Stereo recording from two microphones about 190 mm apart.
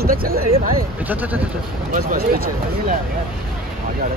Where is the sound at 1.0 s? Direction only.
10° right (ahead or behind).